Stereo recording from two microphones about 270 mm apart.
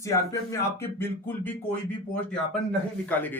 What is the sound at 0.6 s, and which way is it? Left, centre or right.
Speech, centre.